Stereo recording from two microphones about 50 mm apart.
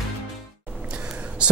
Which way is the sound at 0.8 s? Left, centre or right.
Right.